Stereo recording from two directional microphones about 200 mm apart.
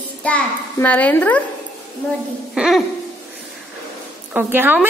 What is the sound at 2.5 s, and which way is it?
Speech, 5° right (ahead or behind).